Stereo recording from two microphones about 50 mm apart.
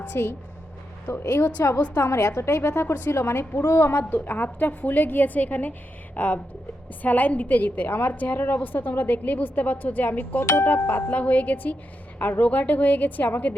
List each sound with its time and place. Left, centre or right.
0.1 s a woman's voice: left
2.0 s a woman's voice: left